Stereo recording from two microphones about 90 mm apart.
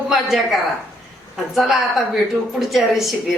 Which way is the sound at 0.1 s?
5° right (ahead or behind).